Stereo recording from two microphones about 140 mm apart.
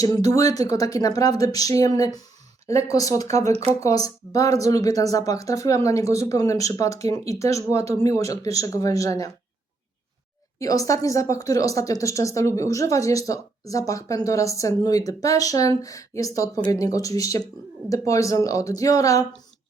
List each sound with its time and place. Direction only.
0.0 s speech: 25° left (ahead or behind)
3.5 s speech: 45° right (ahead or behind)
3.8 s speech: 25° left (ahead or behind)
10.6 s speech: 25° left (ahead or behind)